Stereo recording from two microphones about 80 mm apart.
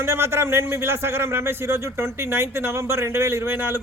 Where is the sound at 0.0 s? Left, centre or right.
Right.